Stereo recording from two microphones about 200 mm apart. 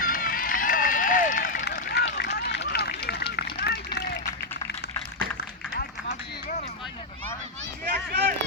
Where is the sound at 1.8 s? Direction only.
55° left (ahead or behind).